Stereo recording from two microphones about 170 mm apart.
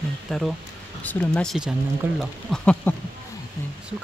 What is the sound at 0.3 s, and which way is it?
Speech, centre (ahead or behind).